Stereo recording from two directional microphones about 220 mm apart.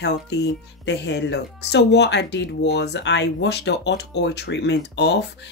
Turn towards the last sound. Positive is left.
turn(degrees=50)  # may be behind; listen again after turning